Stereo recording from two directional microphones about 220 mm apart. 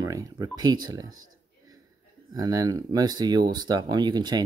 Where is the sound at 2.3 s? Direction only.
15° right (ahead or behind).